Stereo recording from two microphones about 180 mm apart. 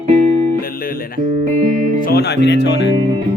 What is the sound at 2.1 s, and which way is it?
Speech, 65° left (ahead or behind).